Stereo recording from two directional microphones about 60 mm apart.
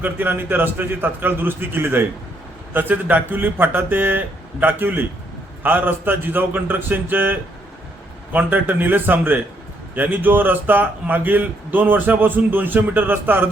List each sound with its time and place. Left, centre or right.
0.0 s a man's voice: right